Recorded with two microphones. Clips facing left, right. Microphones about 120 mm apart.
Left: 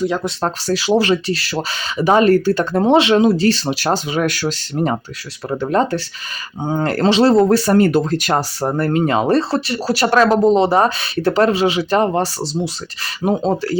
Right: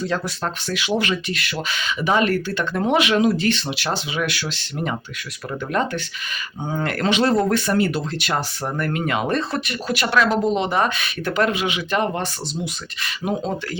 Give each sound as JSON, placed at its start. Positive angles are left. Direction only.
{"t": 0.3, "sound": "speech", "side_deg": 35}